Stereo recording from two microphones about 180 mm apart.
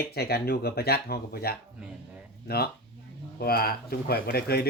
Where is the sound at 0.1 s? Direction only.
60° left (ahead or behind).